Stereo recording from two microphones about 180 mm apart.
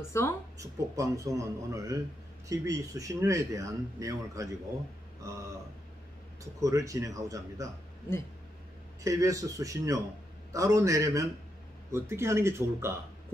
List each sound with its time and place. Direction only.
0.1 s speech: 15° left (ahead or behind)
0.6 s speech: 15° right (ahead or behind)
6.6 s speech: 20° right (ahead or behind)
9.0 s speech: 20° right (ahead or behind)